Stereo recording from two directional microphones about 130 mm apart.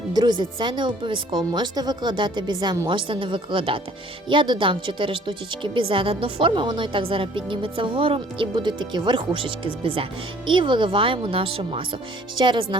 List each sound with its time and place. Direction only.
0.1 s speech: 30° right (ahead or behind)